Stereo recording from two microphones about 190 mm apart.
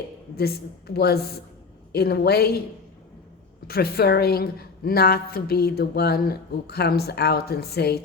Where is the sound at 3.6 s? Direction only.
55° left (ahead or behind).